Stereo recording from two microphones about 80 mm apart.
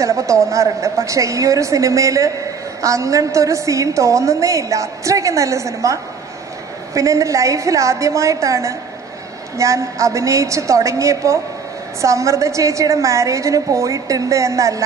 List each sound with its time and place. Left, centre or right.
0.0 s a woman's voice: right